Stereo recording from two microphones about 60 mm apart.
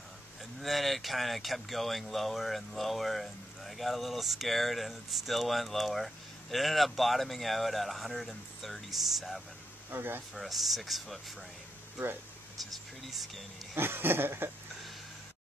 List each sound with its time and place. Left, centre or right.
0.6 s speech: centre
9.8 s speech: right
10.3 s speech: centre
12.7 s speech: centre
13.7 s speech: right